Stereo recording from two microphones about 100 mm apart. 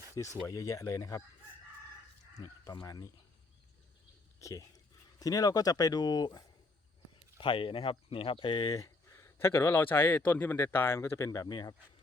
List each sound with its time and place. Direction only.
0.4 s speech: 35° left (ahead or behind)
2.8 s speech: 35° left (ahead or behind)
4.4 s speech: 30° left (ahead or behind)
7.3 s speech: 55° left (ahead or behind)
8.8 s speech: 30° left (ahead or behind)